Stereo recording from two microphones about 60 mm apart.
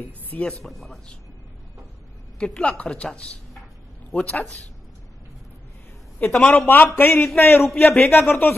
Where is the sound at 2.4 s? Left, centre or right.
Centre.